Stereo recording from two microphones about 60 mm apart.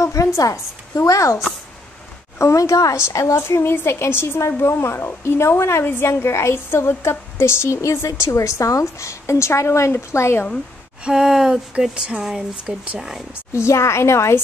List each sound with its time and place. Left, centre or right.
0.0 s a woman's voice: left
11.1 s speech: centre
13.5 s a woman's voice: left